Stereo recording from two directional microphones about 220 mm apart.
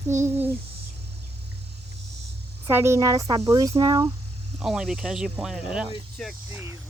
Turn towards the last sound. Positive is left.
turn(degrees=-10)  # may be behind; listen again after turning